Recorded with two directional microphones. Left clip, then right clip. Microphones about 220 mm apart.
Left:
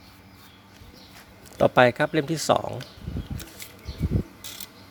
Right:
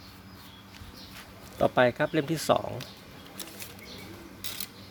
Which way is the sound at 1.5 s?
35° left (ahead or behind).